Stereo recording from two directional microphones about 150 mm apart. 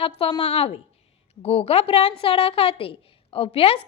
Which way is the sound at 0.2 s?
35° left (ahead or behind).